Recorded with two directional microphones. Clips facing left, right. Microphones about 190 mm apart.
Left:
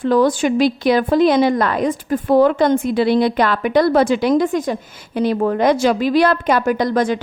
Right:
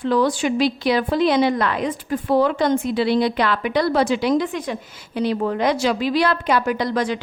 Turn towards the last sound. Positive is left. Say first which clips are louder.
# left 5 dB
turn(degrees=50)  # may be behind; listen again after turning